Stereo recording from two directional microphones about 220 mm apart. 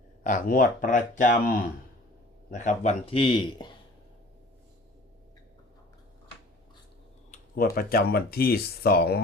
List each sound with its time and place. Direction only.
0.2 s a man's voice: 35° left (ahead or behind); by 3.7 s 20° left (ahead or behind)
7.3 s speech: 40° left (ahead or behind)